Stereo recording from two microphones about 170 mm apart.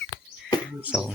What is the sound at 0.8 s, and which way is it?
Speech, 5° right (ahead or behind).